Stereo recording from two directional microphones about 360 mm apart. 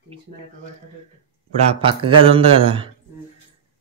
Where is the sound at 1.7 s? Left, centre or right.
Centre.